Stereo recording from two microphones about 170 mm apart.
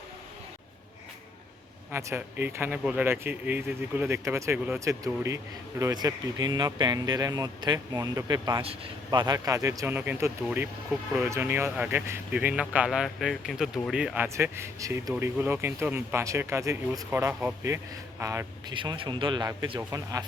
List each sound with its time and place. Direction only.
1.9 s speech: 15° right (ahead or behind)
14.3 s a man's voice: 15° right (ahead or behind)
18.7 s speech: 30° right (ahead or behind)